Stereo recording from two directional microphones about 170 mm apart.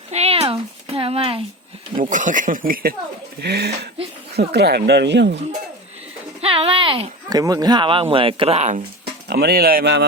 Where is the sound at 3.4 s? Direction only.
75° right (ahead or behind); by 5.4 s 90° right.